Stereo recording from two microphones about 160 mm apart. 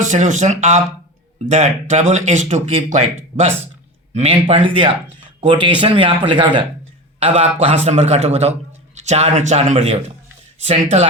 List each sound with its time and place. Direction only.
0.0 s speech: 50° right (ahead or behind)